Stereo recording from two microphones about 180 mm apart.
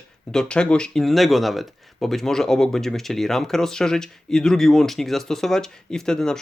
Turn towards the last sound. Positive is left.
turn(degrees=5)  # may be behind; listen again after turning